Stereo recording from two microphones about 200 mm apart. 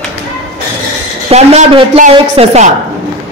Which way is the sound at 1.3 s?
30° right (ahead or behind).